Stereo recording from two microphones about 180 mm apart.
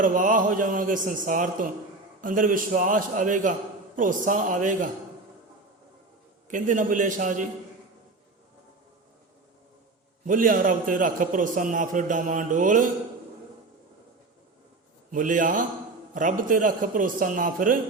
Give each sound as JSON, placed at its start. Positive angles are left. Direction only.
{"t": 0.0, "sound": "a man's voice", "side_deg": -50}
{"t": 6.5, "sound": "a man's voice", "side_deg": -45}
{"t": 10.2, "sound": "a man's voice", "side_deg": -50}
{"t": 15.1, "sound": "a man's voice", "side_deg": -45}